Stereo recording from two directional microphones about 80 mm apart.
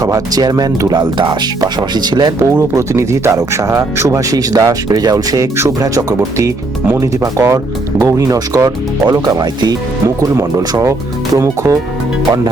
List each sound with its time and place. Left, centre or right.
0.0 s speech: right
1.2 s speech: right
2.4 s speech: right
4.3 s speech: right
7.0 s speech: right
10.7 s speech: right